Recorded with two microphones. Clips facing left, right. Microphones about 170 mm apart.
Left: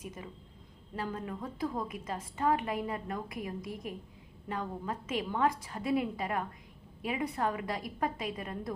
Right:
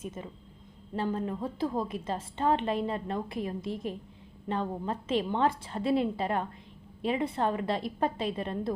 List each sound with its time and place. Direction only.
0.0 s a woman's voice: 25° right (ahead or behind)